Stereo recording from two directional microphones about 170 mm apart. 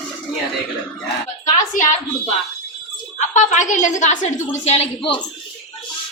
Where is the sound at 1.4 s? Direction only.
45° left (ahead or behind).